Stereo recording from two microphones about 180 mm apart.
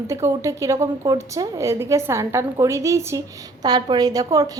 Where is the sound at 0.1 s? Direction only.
15° right (ahead or behind).